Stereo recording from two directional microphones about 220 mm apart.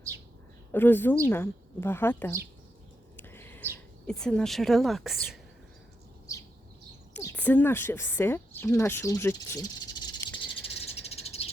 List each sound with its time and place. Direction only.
0.7 s a woman's voice: 10° left (ahead or behind)
3.2 s a sound: 10° left (ahead or behind)
4.0 s a woman's voice: 5° left (ahead or behind)
6.3 s bird: 15° left (ahead or behind)
7.1 s a woman's voice: 10° left (ahead or behind)
11.1 s a sound: 25° left (ahead or behind)